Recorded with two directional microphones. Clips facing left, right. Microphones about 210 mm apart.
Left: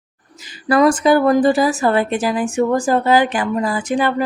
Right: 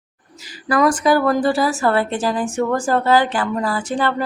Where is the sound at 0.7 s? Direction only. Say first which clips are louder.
Left 3 dB; 25° left (ahead or behind).